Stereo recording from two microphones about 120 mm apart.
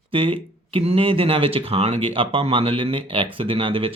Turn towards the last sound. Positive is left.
turn(degrees=-50)  # may be behind; listen again after turning